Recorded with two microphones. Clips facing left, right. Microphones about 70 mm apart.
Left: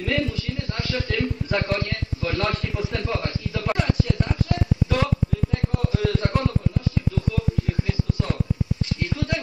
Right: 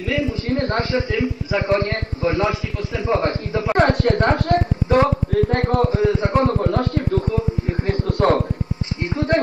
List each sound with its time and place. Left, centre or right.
0.0 s a man's voice: centre
0.5 s a woman's voice: right
0.9 s speech: centre
1.7 s a man's voice: right
3.7 s a woman's voice: right
4.8 s speech: right
5.3 s speech: right
5.9 s a man's voice: right
6.6 s speech: right
9.0 s a man's voice: right